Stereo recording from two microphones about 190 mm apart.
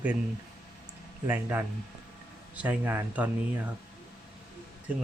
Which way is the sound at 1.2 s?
10° right (ahead or behind).